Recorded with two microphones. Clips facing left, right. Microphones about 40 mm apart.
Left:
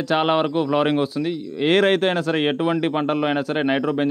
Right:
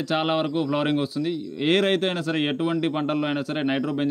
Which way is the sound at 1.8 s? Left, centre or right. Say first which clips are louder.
Left 5 dB; left.